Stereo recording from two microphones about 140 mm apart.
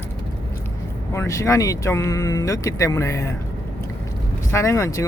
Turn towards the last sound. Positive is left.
turn(degrees=20)  # may be behind; listen again after turning